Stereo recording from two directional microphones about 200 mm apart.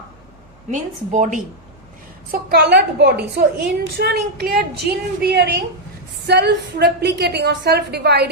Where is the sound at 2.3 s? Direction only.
55° right (ahead or behind).